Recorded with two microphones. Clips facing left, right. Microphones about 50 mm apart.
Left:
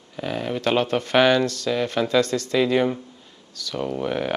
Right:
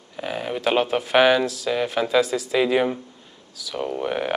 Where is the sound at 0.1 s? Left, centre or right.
Centre.